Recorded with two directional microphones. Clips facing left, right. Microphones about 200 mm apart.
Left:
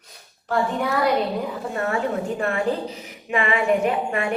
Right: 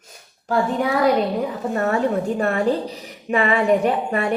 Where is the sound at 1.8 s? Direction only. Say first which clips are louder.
Right 4 dB; 40° right (ahead or behind).